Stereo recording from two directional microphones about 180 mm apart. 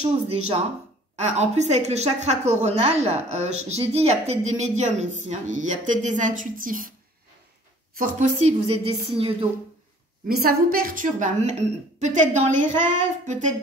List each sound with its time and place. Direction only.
0.0 s a woman's voice: 35° right (ahead or behind)
8.0 s a woman's voice: 45° right (ahead or behind); by 9.5 s 30° right (ahead or behind)
10.2 s a woman's voice: 55° right (ahead or behind)